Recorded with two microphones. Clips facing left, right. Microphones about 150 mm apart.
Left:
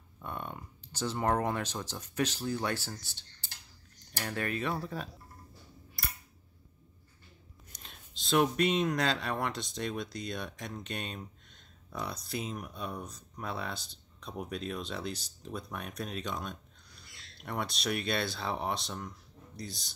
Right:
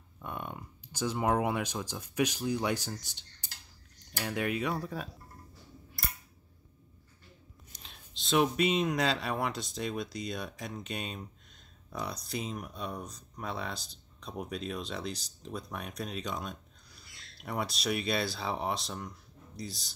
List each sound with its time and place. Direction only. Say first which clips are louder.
0.2 s speech: even; 10° right (ahead or behind)
7.7 s speech: left 1 dB; centre (ahead or behind)